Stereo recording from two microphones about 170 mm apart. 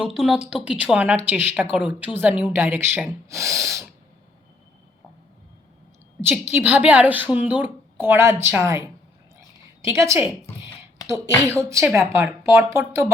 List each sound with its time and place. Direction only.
0.0 s a woman's voice: 5° right (ahead or behind)
6.5 s a woman's voice: 10° right (ahead or behind)
9.9 s a woman's voice: 20° right (ahead or behind)
11.4 s a woman's voice: 15° right (ahead or behind)